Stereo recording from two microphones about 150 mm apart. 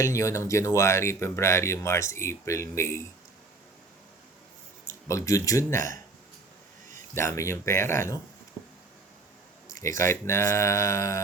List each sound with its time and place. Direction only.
0.0 s speech: 20° left (ahead or behind)
4.9 s speech: 20° left (ahead or behind)
5.7 s speech: 60° right (ahead or behind)
7.1 s speech: 20° left (ahead or behind)
10.0 s speech: 15° left (ahead or behind)